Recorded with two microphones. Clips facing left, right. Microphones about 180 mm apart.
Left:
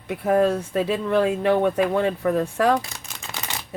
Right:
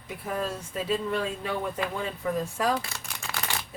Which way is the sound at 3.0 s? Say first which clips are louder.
Even; 20° left (ahead or behind).